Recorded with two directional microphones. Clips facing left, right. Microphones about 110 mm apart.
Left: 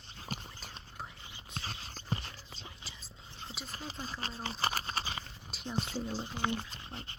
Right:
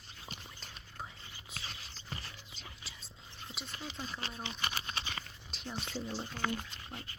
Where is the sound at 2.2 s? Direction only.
30° left (ahead or behind).